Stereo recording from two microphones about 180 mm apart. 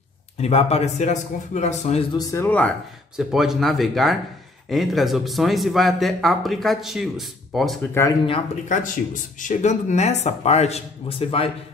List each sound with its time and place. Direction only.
0.4 s speech: 35° left (ahead or behind)
2.1 s speech: 15° left (ahead or behind)
3.2 s speech: centre (ahead or behind)
8.6 s speech: 45° left (ahead or behind); by 11.5 s 30° left (ahead or behind)